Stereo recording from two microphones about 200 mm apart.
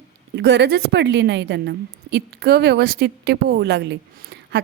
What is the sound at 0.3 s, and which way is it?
Speech, 60° right (ahead or behind).